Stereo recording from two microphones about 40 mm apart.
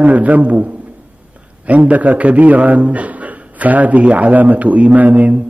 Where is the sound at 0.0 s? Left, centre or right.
Right.